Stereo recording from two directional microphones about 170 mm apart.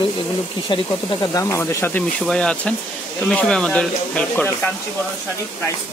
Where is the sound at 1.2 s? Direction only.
20° left (ahead or behind).